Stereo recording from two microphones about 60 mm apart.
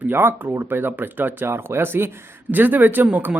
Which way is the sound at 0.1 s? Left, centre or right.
Right.